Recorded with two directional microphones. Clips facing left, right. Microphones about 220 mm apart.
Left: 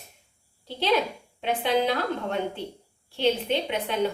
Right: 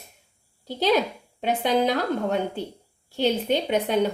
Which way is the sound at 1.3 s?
40° right (ahead or behind).